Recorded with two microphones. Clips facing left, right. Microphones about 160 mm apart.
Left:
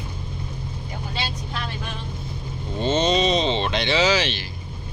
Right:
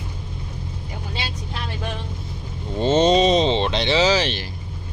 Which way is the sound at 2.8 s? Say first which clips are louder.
Right 4 dB; 45° right (ahead or behind).